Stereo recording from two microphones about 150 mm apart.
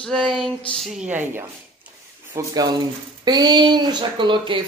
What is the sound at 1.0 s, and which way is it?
Speech, 10° right (ahead or behind).